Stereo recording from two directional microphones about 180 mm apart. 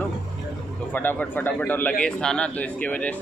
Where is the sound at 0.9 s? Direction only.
10° left (ahead or behind).